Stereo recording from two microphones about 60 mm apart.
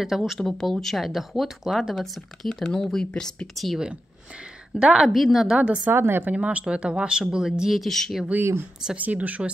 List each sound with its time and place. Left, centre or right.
0.0 s speech: centre
4.7 s speech: centre
5.0 s speech: centre
5.9 s speech: right
6.3 s speech: centre
8.4 s speech: right
8.9 s speech: right